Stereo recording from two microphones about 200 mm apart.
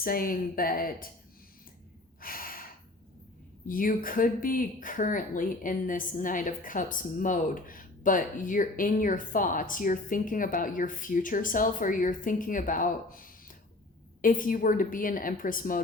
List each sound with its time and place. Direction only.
0.0 s a woman's voice: 45° left (ahead or behind)
2.2 s gasp: 45° left (ahead or behind)
3.7 s a woman's voice: 45° left (ahead or behind)